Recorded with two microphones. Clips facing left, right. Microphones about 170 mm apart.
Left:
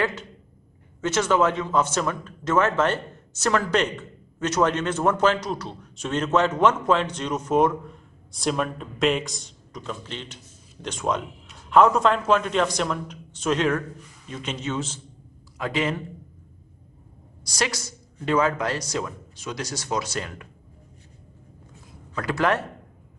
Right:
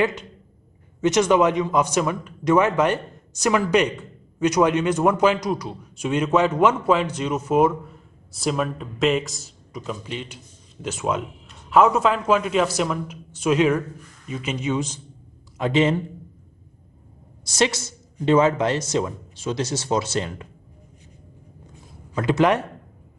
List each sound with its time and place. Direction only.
0.0 s a man's voice: 15° right (ahead or behind)
15.5 s a man's voice: 25° right (ahead or behind)
17.5 s a man's voice: 25° right (ahead or behind)
22.1 s a man's voice: 20° right (ahead or behind)